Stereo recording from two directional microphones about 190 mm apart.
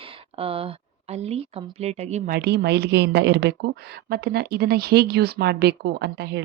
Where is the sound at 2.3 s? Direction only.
60° right (ahead or behind).